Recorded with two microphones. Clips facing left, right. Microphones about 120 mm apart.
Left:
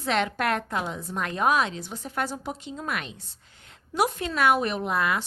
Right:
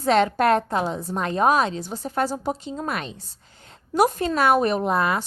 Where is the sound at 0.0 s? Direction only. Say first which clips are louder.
Right 7 dB; 40° right (ahead or behind).